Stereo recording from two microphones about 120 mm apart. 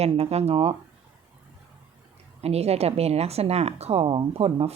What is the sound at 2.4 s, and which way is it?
A woman's voice, 60° right (ahead or behind).